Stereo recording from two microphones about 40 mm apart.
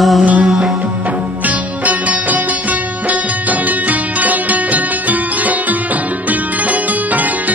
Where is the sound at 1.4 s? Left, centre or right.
Right.